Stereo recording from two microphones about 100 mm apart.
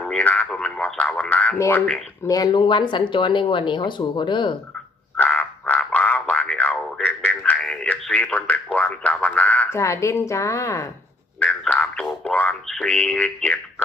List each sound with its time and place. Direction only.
0.0 s speech: 10° left (ahead or behind)
0.9 s a sound: 15° left (ahead or behind)
1.5 s a woman's voice: 30° left (ahead or behind); by 4.5 s 50° left (ahead or behind)
5.1 s frog: 15° left (ahead or behind)
9.6 s a woman's voice: 30° left (ahead or behind)
11.7 s a sound: 10° left (ahead or behind)